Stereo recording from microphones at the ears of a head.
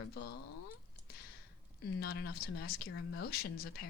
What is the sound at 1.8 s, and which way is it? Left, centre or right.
Speech, left.